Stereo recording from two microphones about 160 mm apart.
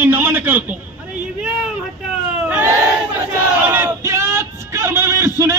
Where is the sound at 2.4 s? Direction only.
10° right (ahead or behind).